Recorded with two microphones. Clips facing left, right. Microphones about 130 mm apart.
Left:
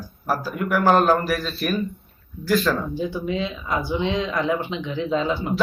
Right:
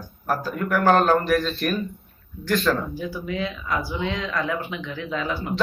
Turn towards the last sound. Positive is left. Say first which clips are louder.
# left 4 dB
turn(degrees=25)  # may be behind; listen again after turning